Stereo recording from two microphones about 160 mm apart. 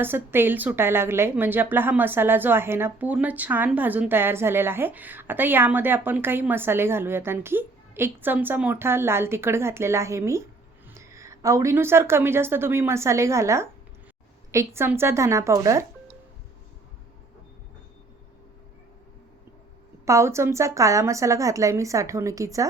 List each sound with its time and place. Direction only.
0.0 s a woman's voice: 15° right (ahead or behind)
20.1 s a woman's voice: 20° right (ahead or behind)